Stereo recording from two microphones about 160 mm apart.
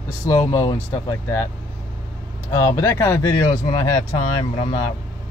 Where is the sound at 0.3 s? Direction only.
20° left (ahead or behind).